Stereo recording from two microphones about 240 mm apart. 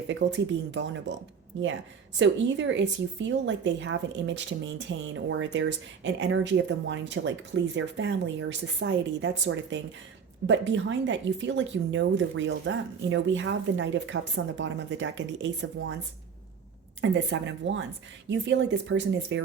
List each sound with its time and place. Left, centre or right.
0.1 s speech: right
2.1 s speech: right
17.0 s speech: right